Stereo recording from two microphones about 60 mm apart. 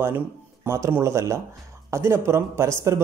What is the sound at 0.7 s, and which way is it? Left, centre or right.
Speech, right.